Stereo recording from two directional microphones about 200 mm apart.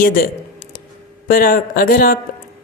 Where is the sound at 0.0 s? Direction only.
45° left (ahead or behind).